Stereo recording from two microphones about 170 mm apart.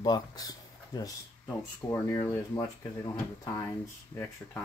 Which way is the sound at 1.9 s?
15° left (ahead or behind).